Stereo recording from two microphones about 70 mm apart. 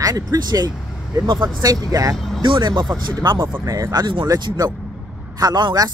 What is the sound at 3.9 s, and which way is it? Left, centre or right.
Speech, right.